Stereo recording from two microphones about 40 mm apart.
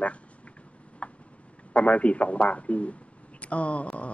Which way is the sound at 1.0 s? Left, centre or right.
Left.